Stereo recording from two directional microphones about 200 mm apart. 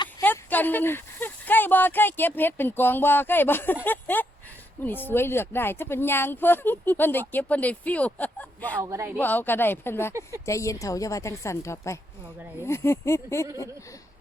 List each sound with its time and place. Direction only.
0.2 s speech: 10° left (ahead or behind)
8.8 s speech: 15° right (ahead or behind)
9.2 s speech: 10° left (ahead or behind)